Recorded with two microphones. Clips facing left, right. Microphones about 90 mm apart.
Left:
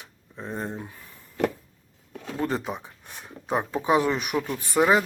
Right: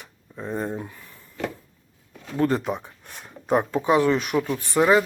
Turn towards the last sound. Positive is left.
turn(degrees=10)  # may be behind; listen again after turning